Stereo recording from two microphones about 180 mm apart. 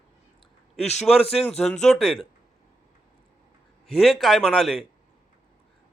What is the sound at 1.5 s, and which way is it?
Speech, centre (ahead or behind).